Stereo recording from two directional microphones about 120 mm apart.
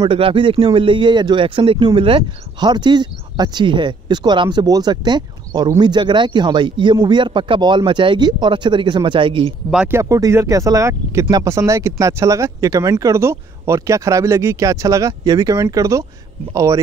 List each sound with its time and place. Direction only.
0.1 s speech: 45° right (ahead or behind)
9.8 s speech: 25° right (ahead or behind)